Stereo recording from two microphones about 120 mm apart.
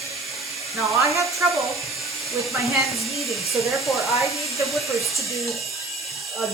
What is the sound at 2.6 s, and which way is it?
Speech, centre (ahead or behind).